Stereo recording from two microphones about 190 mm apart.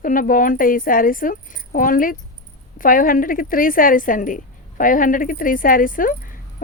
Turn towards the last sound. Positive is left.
turn(degrees=45)  # may be behind; listen again after turning